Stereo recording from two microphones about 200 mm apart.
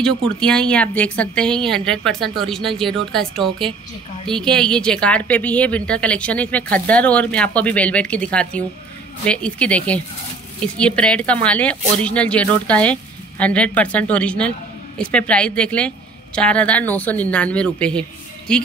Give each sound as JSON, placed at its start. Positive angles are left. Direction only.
{"t": 0.4, "sound": "speech", "side_deg": 5}